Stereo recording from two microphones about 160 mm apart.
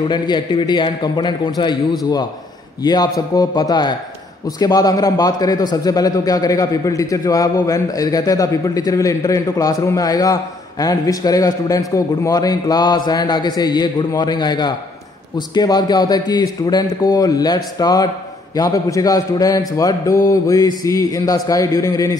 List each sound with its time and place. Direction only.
0.1 s a man's voice: 25° left (ahead or behind)